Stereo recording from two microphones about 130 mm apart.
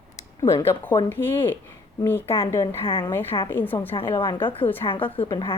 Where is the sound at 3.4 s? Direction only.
15° left (ahead or behind).